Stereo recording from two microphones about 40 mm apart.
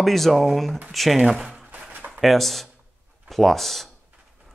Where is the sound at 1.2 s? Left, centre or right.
Centre.